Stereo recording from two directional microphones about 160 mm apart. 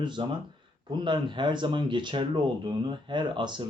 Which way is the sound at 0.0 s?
30° right (ahead or behind).